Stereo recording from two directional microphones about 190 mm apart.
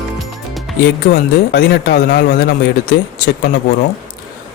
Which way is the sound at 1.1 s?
55° left (ahead or behind).